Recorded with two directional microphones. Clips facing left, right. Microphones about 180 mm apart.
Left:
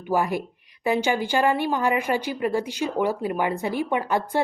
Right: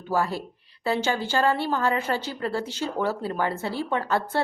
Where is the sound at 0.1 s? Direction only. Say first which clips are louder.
Left 2 dB; 15° left (ahead or behind).